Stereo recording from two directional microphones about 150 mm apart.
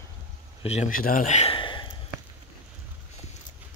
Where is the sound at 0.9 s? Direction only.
70° left (ahead or behind); by 1.5 s 50° left (ahead or behind).